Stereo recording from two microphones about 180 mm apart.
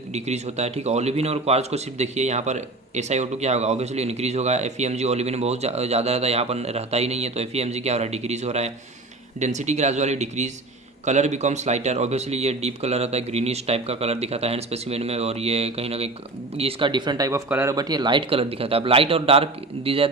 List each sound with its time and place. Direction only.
0.1 s speech: 40° right (ahead or behind)